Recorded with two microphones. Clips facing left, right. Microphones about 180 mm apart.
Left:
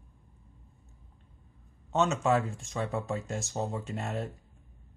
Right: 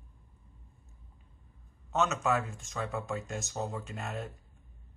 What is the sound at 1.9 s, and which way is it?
Speech, 30° left (ahead or behind).